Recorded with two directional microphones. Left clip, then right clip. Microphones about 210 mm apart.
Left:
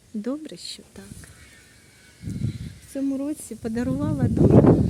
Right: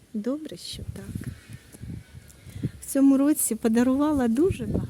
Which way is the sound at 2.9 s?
40° right (ahead or behind).